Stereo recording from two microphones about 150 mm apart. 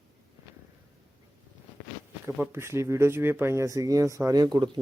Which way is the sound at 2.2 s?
15° right (ahead or behind).